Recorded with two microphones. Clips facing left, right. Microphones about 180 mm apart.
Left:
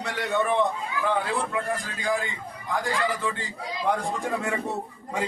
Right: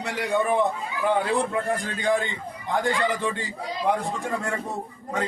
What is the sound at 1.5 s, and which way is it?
A man's voice, 25° right (ahead or behind).